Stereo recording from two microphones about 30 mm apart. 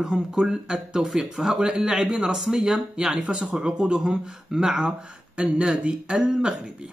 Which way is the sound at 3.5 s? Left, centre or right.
Right.